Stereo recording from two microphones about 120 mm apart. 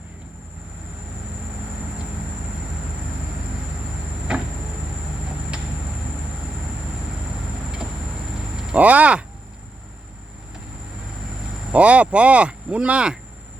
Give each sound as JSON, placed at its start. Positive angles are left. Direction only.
{"t": 4.3, "sound": "vehicle", "side_deg": -5}
{"t": 8.5, "sound": "speech", "side_deg": -10}
{"t": 11.7, "sound": "speech", "side_deg": -10}